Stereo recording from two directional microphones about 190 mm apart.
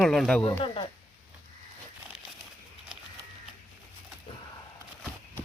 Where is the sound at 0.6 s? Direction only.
25° left (ahead or behind).